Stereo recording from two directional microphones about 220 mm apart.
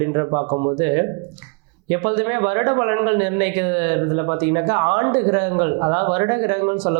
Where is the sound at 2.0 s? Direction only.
20° right (ahead or behind).